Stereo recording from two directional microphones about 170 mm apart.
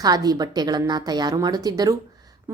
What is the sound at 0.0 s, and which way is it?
A woman's voice, 20° right (ahead or behind).